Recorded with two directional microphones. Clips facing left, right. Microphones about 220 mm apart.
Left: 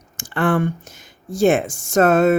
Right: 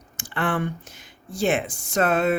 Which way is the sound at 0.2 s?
45° left (ahead or behind).